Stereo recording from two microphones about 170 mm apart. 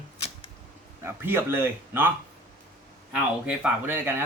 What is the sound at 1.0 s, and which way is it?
Speech, 15° right (ahead or behind).